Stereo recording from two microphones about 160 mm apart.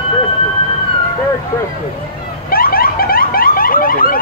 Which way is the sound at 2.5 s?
65° left (ahead or behind).